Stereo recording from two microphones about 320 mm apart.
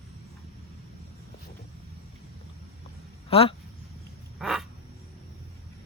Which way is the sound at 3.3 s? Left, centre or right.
Centre.